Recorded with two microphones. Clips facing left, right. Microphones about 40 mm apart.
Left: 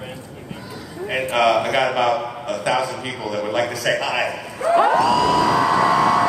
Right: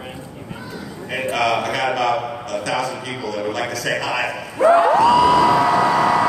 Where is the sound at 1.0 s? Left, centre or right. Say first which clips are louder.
Left 3 dB; centre.